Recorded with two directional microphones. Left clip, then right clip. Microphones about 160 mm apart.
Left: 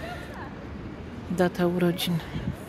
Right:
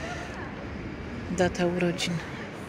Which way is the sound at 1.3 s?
50° left (ahead or behind).